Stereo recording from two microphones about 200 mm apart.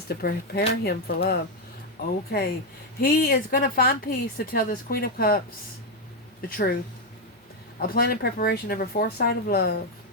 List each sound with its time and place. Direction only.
0.1 s speech: 50° left (ahead or behind)
6.5 s speech: 50° left (ahead or behind)
7.8 s speech: 50° left (ahead or behind)